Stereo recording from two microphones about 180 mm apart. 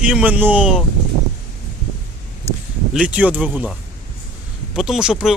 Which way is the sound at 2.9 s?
5° right (ahead or behind).